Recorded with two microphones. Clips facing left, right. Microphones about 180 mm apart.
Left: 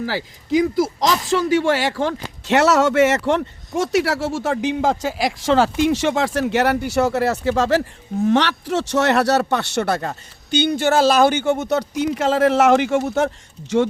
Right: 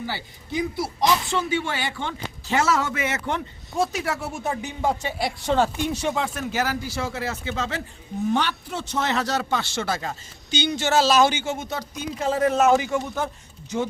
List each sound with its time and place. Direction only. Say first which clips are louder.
0.0 s speech: left 7 dB; 90° left; by 7.8 s 70° left (ahead or behind)
8.3 s a man's voice: left 7 dB; 85° left